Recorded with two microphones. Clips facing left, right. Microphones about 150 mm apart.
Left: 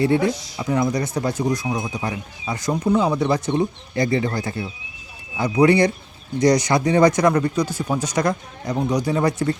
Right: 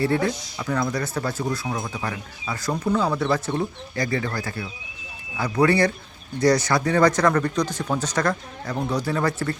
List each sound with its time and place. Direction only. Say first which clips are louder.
0.0 s speech: left 4 dB; 20° left (ahead or behind)